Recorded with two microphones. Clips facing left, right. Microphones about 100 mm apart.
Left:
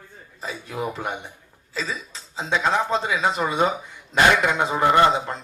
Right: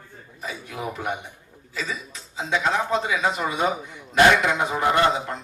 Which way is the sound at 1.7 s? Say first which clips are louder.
Left 1 dB; 30° left (ahead or behind).